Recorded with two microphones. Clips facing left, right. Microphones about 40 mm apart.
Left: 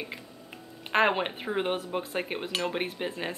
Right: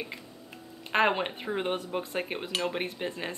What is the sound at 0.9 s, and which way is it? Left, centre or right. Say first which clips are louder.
Speech: left 1 dB; centre.